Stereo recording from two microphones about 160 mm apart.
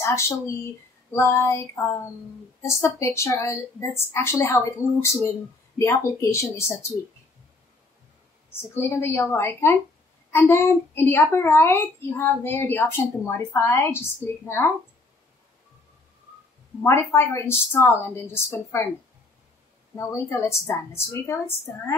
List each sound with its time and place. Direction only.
1.1 s a woman's voice: 15° left (ahead or behind)
8.5 s a woman's voice: 15° left (ahead or behind)
16.8 s a woman's voice: 15° left (ahead or behind)
20.0 s a woman's voice: 15° left (ahead or behind)